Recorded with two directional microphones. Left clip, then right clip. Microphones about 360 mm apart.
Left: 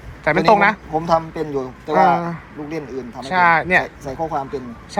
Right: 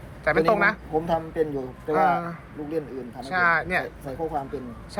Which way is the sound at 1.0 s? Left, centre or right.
Left.